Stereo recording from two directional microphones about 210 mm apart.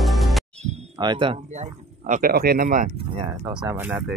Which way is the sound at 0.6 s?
30° right (ahead or behind).